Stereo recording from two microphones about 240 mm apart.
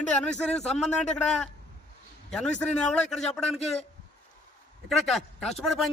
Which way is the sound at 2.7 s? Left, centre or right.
Centre.